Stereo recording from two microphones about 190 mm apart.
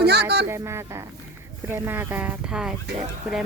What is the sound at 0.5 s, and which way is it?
Speech, 15° right (ahead or behind).